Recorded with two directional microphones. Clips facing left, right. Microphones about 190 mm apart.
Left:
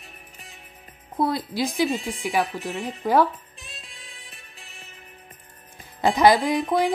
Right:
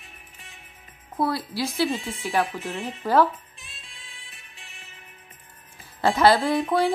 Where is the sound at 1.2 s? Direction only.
20° left (ahead or behind).